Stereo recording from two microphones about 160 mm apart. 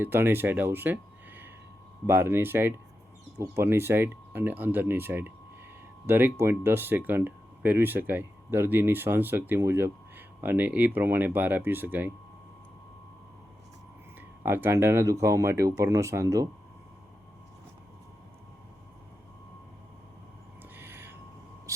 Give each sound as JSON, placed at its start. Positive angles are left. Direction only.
{"t": 0.0, "sound": "speech", "side_deg": -15}
{"t": 14.2, "sound": "speech", "side_deg": -15}
{"t": 20.7, "sound": "a sound", "side_deg": -15}